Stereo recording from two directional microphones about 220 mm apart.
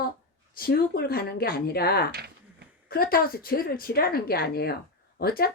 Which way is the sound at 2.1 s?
45° right (ahead or behind).